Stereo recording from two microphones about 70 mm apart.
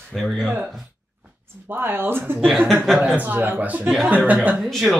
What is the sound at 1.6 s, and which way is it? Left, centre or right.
Speech, right.